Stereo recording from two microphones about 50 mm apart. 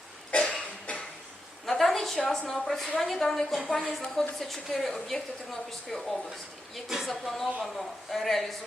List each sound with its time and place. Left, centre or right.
0.3 s cough: centre
1.6 s a sound: centre
2.5 s a woman's voice: centre